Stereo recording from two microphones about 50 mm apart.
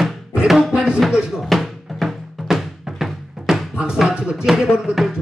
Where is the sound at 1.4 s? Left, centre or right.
Centre.